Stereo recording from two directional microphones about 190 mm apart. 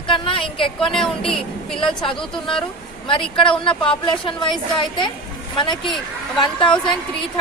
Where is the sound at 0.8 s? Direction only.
Centre (ahead or behind).